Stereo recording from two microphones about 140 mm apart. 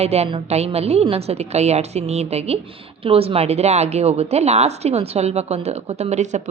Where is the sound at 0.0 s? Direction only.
50° right (ahead or behind).